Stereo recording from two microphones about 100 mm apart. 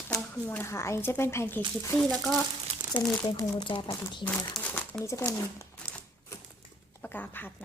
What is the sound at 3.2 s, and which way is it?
Speech, 40° left (ahead or behind).